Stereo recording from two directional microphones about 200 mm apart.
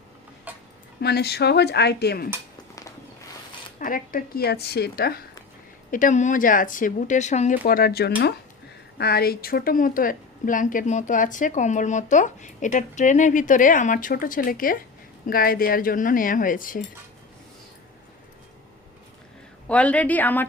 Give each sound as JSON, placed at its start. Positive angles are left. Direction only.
{"t": 1.0, "sound": "speech", "side_deg": 55}
{"t": 3.8, "sound": "speech", "side_deg": 45}
{"t": 5.9, "sound": "a woman's voice", "side_deg": 40}
{"t": 19.6, "sound": "a woman's voice", "side_deg": 5}